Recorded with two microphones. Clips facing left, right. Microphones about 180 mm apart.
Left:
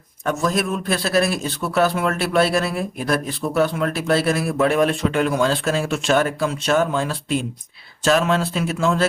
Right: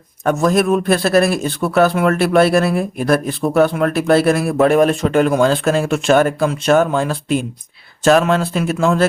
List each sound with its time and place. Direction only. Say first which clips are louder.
0.3 s a man's voice: right 7 dB; 55° right (ahead or behind)